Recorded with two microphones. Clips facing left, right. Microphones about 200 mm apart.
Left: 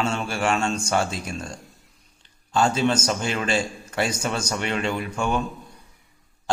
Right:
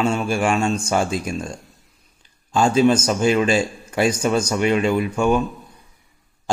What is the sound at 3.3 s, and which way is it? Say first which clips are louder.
Speech: right 11 dB; 20° right (ahead or behind).